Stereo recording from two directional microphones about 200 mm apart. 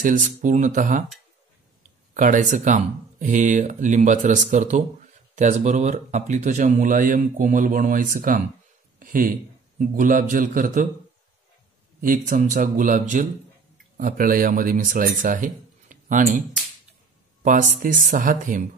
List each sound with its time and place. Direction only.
0.0 s speech: 40° right (ahead or behind)
2.1 s a man's voice: 40° right (ahead or behind)
12.0 s a man's voice: 40° right (ahead or behind)